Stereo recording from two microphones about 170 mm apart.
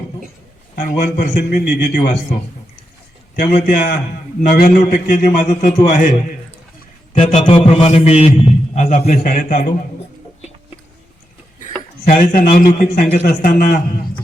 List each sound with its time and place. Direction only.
0.8 s a man's voice: 55° left (ahead or behind)
3.3 s a man's voice: 65° left (ahead or behind); by 7.4 s 45° left (ahead or behind)
7.4 s a man's voice: 35° left (ahead or behind); by 9.7 s 55° left (ahead or behind)
11.6 s a man's voice: 60° left (ahead or behind)